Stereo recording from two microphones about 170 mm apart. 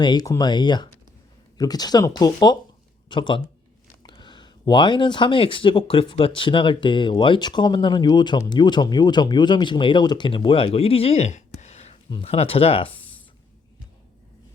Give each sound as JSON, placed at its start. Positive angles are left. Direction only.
{"t": 0.0, "sound": "speech", "side_deg": 25}